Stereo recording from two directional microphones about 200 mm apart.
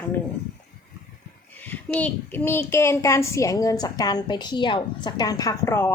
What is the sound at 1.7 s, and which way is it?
A child's voice, 10° left (ahead or behind).